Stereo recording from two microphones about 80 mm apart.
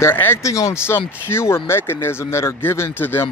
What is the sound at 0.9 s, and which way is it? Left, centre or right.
Speech, left.